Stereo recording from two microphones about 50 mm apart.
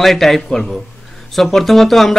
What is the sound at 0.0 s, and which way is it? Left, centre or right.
Speech, centre.